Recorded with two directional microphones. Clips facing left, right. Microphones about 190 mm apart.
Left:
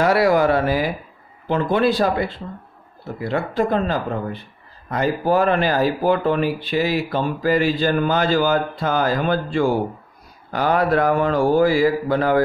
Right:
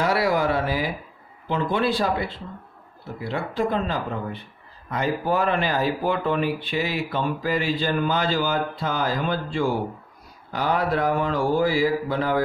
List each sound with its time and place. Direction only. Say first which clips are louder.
0.0 s a man's voice: left 6 dB; 50° left (ahead or behind)